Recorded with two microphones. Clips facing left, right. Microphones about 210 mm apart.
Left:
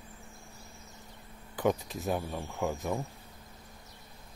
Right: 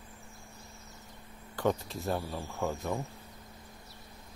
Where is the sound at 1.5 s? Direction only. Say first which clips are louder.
Left 1 dB; 15° left (ahead or behind).